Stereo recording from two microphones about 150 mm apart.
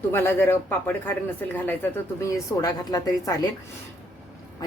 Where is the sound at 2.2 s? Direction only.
20° left (ahead or behind).